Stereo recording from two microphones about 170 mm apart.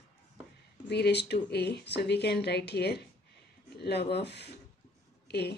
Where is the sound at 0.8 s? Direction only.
75° left (ahead or behind).